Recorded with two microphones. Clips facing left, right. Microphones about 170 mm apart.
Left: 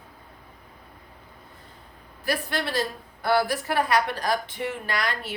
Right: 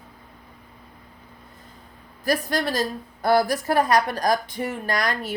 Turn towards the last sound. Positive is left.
turn(degrees=-45)  # may be behind; listen again after turning